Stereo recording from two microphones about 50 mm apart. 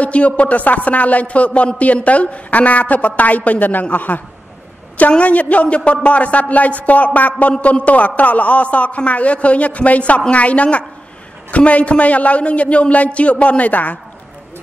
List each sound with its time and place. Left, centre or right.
0.0 s a man's voice: left